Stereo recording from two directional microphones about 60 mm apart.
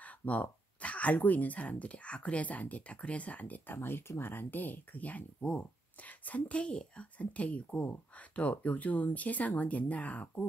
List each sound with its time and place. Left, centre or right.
0.0 s speech: left